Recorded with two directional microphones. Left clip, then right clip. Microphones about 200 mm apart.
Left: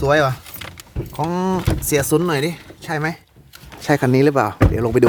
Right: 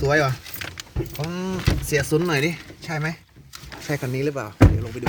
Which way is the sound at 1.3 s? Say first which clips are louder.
Left 7 dB; 30° left (ahead or behind).